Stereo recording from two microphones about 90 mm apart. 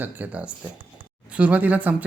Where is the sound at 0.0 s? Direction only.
20° right (ahead or behind).